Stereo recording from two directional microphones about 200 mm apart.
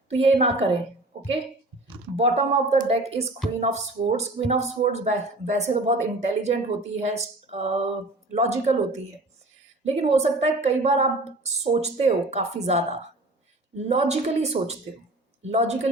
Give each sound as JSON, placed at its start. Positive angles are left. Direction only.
{"t": 0.1, "sound": "a woman's voice", "side_deg": -30}
{"t": 13.8, "sound": "speech", "side_deg": -30}